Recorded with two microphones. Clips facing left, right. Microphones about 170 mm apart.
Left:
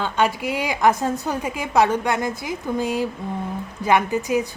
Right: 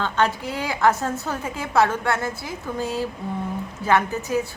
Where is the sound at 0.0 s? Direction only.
10° left (ahead or behind).